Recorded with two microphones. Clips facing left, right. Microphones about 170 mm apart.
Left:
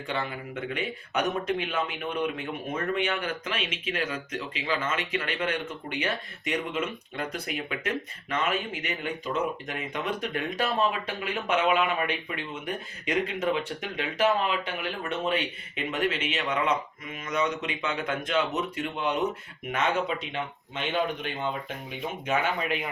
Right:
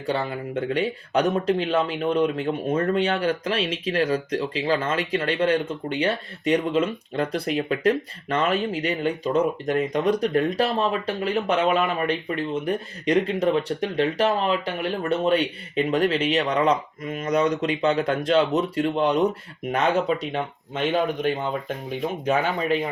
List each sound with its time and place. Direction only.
0.0 s speech: 35° right (ahead or behind)